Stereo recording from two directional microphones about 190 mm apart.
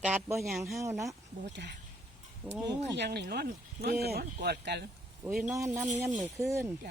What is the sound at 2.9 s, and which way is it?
Speech, 60° right (ahead or behind).